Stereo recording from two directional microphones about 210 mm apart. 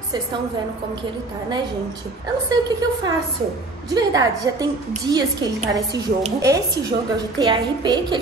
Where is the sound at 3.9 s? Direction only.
20° right (ahead or behind).